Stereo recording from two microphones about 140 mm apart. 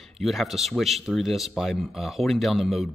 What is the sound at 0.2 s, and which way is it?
A man's voice, centre (ahead or behind).